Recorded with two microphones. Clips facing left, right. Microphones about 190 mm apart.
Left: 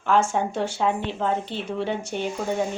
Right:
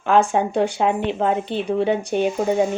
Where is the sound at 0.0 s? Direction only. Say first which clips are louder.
Right 4 dB; 15° right (ahead or behind).